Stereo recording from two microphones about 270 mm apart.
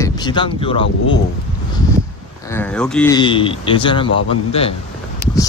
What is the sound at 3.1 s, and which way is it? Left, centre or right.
Speech, centre.